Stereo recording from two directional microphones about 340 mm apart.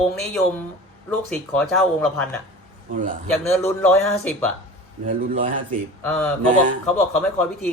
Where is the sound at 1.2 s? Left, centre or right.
Centre.